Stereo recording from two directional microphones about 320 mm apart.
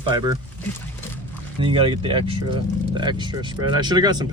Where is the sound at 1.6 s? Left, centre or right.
Centre.